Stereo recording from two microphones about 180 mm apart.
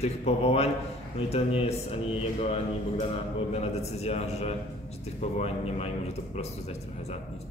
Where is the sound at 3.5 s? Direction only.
35° left (ahead or behind).